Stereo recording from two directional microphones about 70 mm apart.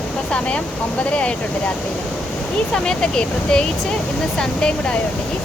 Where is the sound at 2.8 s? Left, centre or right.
Centre.